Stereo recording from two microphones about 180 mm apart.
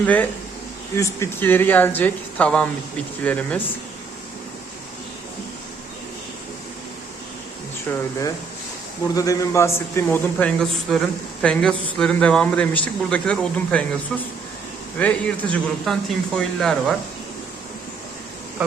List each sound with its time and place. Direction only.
0.0 s a man's voice: 10° left (ahead or behind)
7.9 s a man's voice: 15° left (ahead or behind)
9.1 s a man's voice: 20° left (ahead or behind); by 16.9 s centre (ahead or behind)